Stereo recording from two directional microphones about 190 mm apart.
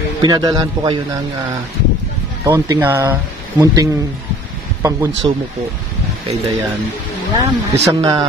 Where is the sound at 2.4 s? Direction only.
15° right (ahead or behind).